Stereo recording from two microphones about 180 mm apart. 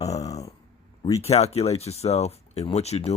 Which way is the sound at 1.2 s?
35° left (ahead or behind).